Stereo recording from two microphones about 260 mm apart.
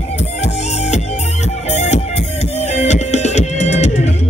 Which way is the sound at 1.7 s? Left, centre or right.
Left.